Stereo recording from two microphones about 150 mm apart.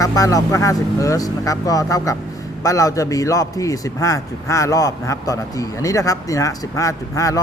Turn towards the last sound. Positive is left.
turn(degrees=20)  # may be behind; listen again after turning